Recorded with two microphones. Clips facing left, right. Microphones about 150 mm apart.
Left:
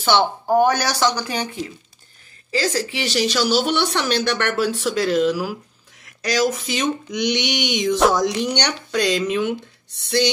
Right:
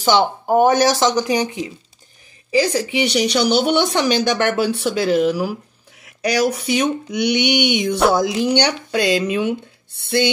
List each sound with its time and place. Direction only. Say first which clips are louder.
0.0 s speech: right 2 dB; 10° right (ahead or behind)
6.0 s a sound: right 3 dB; 10° right (ahead or behind)
6.5 s speech: right 4 dB; 5° right (ahead or behind)